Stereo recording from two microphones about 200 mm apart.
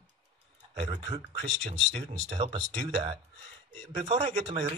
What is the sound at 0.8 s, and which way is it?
Speech, 25° right (ahead or behind).